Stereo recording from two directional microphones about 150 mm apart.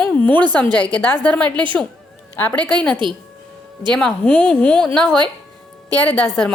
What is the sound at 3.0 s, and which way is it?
Speech, 30° right (ahead or behind).